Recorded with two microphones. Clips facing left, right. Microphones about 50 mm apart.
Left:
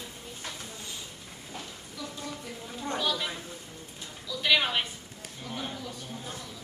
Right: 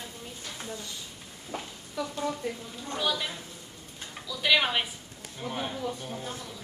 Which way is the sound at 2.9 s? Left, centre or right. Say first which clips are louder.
Right 2 dB; centre.